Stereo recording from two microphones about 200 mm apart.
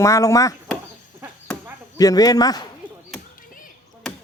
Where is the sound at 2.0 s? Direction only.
20° left (ahead or behind).